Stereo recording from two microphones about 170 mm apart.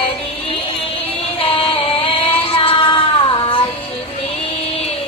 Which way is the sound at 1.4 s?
30° left (ahead or behind).